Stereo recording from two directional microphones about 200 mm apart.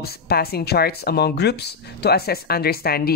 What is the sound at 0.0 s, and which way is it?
Speech, 50° left (ahead or behind).